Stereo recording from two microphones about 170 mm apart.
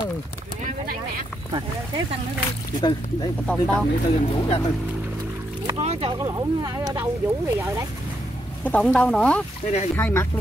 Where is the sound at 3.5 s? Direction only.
5° left (ahead or behind).